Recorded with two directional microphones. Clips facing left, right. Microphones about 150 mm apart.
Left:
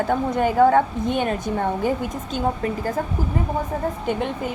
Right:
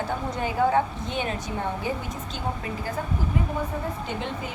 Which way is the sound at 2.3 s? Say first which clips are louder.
Left 9 dB; 50° left (ahead or behind).